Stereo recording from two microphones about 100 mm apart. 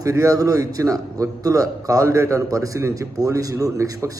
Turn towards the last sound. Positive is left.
turn(degrees=-35)  # may be behind; listen again after turning